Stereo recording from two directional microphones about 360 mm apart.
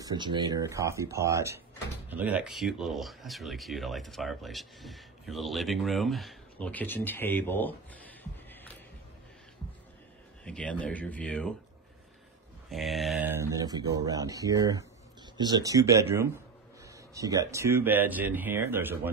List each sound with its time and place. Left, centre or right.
0.0 s speech: centre
10.4 s speech: centre
12.6 s speech: centre